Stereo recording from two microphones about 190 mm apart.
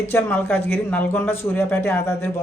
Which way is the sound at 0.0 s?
10° left (ahead or behind).